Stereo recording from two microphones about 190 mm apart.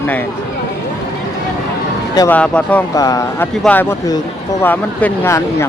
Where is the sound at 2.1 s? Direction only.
10° left (ahead or behind).